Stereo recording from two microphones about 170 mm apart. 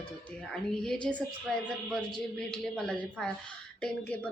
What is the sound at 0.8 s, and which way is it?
A woman's voice, 5° left (ahead or behind).